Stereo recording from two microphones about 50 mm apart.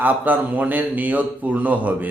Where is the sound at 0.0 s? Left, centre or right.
Right.